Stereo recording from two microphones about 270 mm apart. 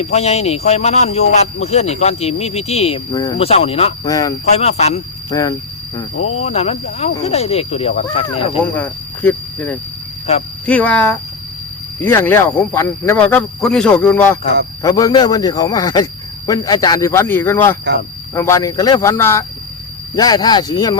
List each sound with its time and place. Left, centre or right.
0.0 s speech: left
5.3 s speech: centre
6.1 s speech: left
6.4 s speech: left
8.7 s speech: centre
10.3 s speech: left
10.7 s speech: centre
14.4 s a man's voice: right
14.8 s speech: centre